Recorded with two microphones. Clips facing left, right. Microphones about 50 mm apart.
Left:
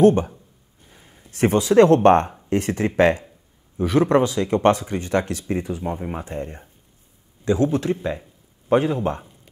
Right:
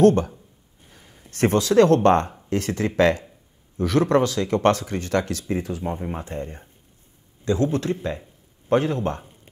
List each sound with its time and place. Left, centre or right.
0.0 s speech: centre
0.9 s a sound: centre
2.0 s speech: left
5.7 s speech: centre
7.4 s speech: centre